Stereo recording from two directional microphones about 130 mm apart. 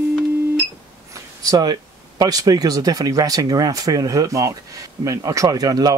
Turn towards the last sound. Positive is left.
turn(degrees=-30)  # may be behind; listen again after turning